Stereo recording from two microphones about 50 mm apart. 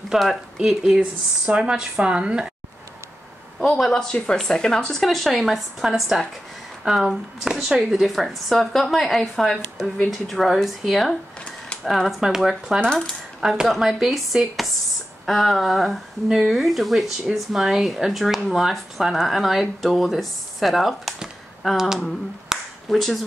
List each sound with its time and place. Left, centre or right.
0.1 s speech: centre
3.8 s speech: centre
12.8 s speech: centre
13.4 s speech: centre
22.5 s a sound: centre
22.8 s speech: centre